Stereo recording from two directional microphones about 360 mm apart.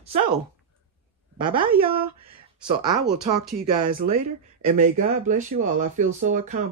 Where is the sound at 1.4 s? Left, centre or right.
Centre.